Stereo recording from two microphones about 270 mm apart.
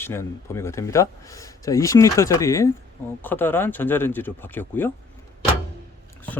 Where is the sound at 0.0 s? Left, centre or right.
Centre.